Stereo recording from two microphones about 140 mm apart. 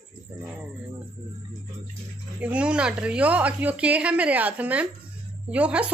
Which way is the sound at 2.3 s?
10° right (ahead or behind).